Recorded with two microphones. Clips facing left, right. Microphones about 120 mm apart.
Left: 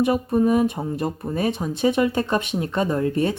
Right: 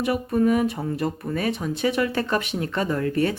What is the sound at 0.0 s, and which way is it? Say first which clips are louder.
Speech: left 2 dB; 25° left (ahead or behind).